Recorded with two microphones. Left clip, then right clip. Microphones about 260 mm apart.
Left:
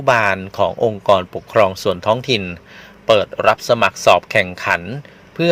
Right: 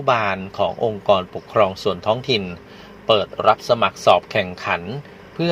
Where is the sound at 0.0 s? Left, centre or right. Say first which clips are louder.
Left 4 dB; left.